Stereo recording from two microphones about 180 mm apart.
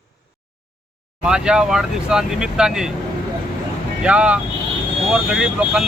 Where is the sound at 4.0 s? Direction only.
5° right (ahead or behind).